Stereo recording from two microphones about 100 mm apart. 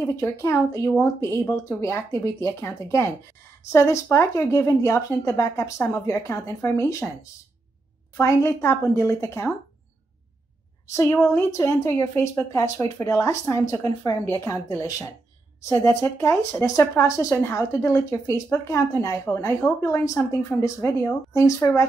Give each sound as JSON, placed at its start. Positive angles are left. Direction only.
{"t": 0.0, "sound": "a woman's voice", "side_deg": 30}
{"t": 8.2, "sound": "a woman's voice", "side_deg": 30}
{"t": 10.9, "sound": "a woman's voice", "side_deg": 30}